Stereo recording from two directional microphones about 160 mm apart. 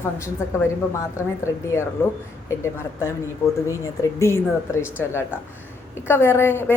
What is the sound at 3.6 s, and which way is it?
Speech, 20° left (ahead or behind).